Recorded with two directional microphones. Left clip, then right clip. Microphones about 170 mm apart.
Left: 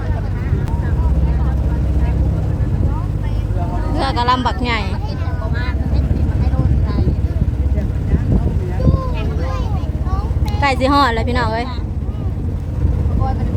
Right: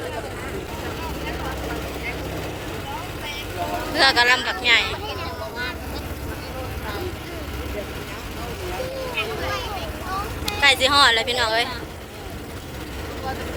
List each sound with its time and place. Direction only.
3.9 s speech: 20° left (ahead or behind)
10.6 s speech: 35° left (ahead or behind)